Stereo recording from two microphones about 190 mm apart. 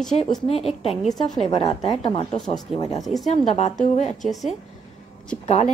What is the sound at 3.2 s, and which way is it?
Speech, 35° left (ahead or behind).